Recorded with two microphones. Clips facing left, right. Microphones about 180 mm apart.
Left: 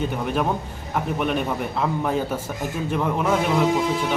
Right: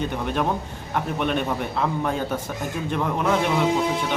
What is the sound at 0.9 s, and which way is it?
A man's voice, 5° left (ahead or behind).